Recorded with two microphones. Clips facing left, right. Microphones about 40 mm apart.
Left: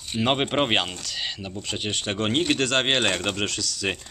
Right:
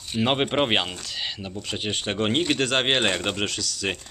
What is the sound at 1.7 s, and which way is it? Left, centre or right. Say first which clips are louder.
Speech: right 1 dB; centre.